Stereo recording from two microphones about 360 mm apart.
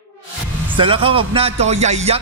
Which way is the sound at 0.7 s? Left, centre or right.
Centre.